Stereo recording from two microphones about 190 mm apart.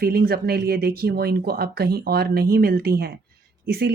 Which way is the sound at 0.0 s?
50° right (ahead or behind).